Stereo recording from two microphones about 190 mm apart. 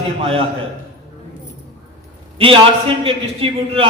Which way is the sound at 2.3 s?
30° right (ahead or behind).